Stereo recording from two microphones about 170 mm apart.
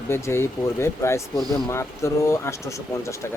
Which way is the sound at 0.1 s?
15° left (ahead or behind).